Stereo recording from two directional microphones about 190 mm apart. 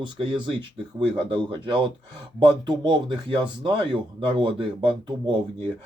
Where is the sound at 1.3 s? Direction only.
25° right (ahead or behind).